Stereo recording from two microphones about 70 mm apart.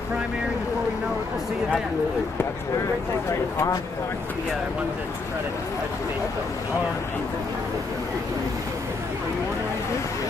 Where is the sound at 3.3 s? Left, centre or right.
Left.